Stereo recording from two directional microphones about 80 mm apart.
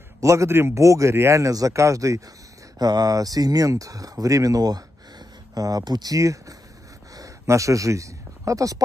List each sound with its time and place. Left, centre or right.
0.2 s speech: right
2.8 s speech: right
6.1 s speech: right